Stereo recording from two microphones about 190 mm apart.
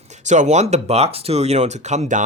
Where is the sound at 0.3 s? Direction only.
40° right (ahead or behind).